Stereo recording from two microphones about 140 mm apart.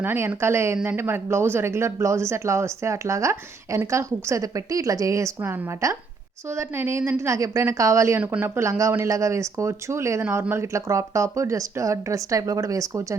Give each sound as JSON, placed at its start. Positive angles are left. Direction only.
{"t": 0.0, "sound": "speech", "side_deg": -15}